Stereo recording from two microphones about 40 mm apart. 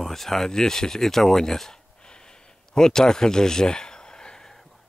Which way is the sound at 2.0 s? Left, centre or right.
Left.